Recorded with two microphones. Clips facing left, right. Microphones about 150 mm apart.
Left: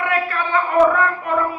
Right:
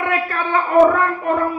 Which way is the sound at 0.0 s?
45° right (ahead or behind).